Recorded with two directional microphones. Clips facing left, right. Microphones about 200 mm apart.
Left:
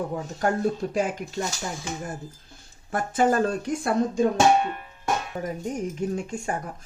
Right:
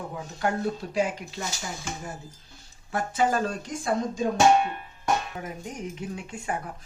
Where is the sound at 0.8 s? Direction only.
45° left (ahead or behind).